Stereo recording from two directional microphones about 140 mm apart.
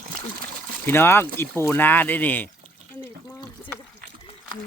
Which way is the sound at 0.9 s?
15° left (ahead or behind).